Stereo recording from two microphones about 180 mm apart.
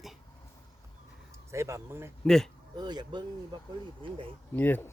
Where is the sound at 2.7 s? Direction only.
25° right (ahead or behind).